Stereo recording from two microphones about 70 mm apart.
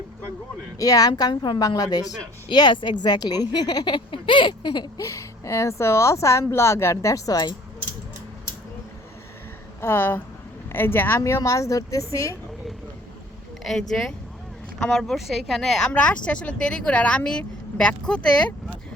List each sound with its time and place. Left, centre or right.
0.8 s a woman's voice: left
4.6 s a sound: left
4.9 s speech: left
9.8 s speech: left
11.2 s speech: left
13.7 s speech: centre
15.9 s speech: centre